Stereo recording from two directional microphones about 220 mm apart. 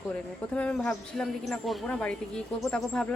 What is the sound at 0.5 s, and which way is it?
A woman's voice, 5° left (ahead or behind).